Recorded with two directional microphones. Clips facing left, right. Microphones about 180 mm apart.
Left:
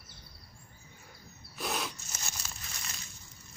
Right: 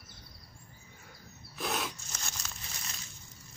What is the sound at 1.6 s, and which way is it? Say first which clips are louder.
Rub: right 1 dB; centre (ahead or behind).